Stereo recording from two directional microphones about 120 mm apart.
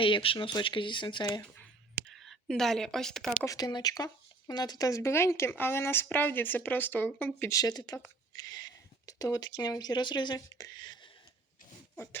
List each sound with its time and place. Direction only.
0.0 s speech: 45° left (ahead or behind)
2.1 s a woman's voice: centre (ahead or behind)
3.4 s speech: 30° left (ahead or behind); by 7.5 s 15° left (ahead or behind)
7.5 s speech: 30° left (ahead or behind)